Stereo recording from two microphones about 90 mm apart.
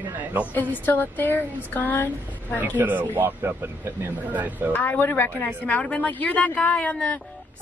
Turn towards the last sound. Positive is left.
turn(degrees=15)  # may be behind; listen again after turning